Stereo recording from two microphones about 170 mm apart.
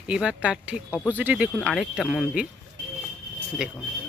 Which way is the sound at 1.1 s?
10° right (ahead or behind).